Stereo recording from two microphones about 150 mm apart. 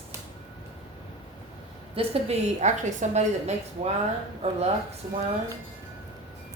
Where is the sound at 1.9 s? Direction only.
40° right (ahead or behind).